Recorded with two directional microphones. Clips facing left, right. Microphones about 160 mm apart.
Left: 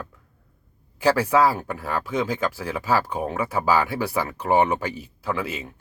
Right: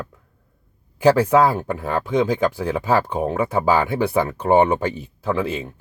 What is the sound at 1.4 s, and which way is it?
Speech, 20° right (ahead or behind).